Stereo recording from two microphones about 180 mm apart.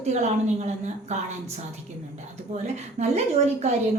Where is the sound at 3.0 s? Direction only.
40° right (ahead or behind).